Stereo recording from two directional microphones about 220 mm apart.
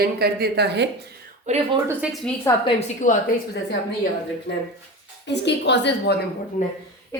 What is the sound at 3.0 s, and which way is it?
Speech, 35° left (ahead or behind).